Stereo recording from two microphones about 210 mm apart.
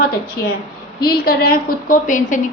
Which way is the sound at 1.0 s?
45° left (ahead or behind).